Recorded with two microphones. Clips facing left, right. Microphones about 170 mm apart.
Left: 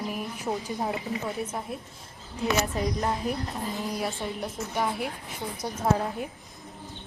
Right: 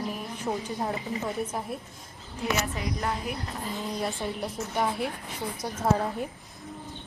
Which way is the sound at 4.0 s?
Centre (ahead or behind).